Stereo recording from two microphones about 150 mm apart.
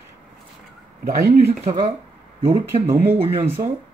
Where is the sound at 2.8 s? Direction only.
15° right (ahead or behind).